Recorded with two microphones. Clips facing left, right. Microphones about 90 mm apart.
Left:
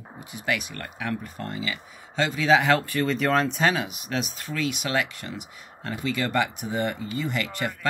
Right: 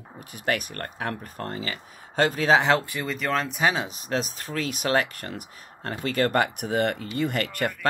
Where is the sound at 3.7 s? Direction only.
35° right (ahead or behind); by 7.9 s 50° right (ahead or behind).